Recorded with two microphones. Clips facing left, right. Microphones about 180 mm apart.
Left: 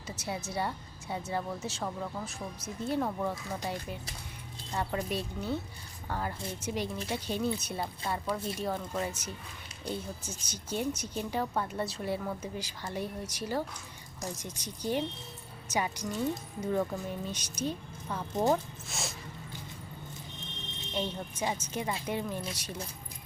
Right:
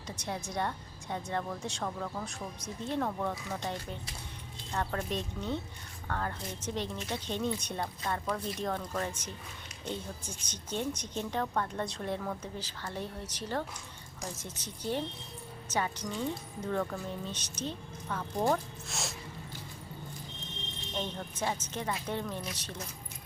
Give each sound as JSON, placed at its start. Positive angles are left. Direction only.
{"t": 0.2, "sound": "a woman's voice", "side_deg": 5}
{"t": 18.9, "sound": "speech", "side_deg": 0}
{"t": 20.9, "sound": "a woman's voice", "side_deg": 10}